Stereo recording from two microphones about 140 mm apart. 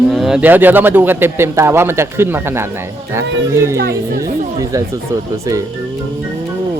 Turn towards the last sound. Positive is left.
turn(degrees=-25)  # may be behind; listen again after turning